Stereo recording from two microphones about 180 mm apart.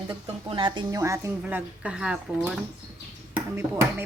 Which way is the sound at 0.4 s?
30° right (ahead or behind).